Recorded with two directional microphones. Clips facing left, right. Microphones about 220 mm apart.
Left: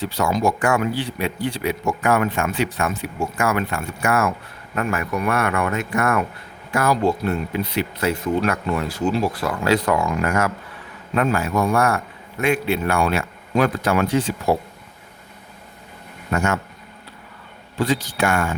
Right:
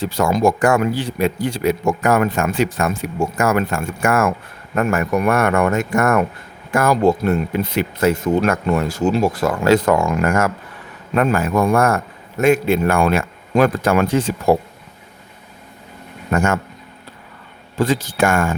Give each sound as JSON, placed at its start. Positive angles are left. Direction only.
{"t": 0.0, "sound": "speech", "side_deg": -45}
{"t": 16.3, "sound": "speech", "side_deg": -50}
{"t": 17.7, "sound": "speech", "side_deg": -45}